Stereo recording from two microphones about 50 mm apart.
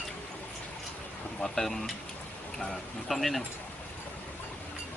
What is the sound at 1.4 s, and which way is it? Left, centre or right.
Speech, centre.